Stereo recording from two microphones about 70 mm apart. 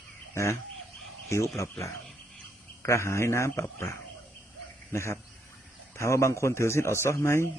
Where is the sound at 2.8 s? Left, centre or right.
Left.